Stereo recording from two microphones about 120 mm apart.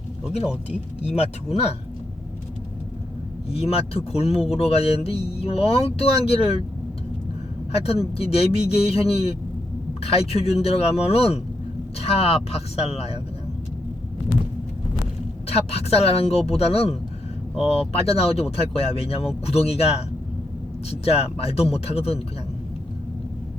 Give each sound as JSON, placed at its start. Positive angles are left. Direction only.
{"t": 0.7, "sound": "speech", "side_deg": 60}
{"t": 3.5, "sound": "speech", "side_deg": 60}
{"t": 7.7, "sound": "speech", "side_deg": 55}
{"t": 15.4, "sound": "speech", "side_deg": 60}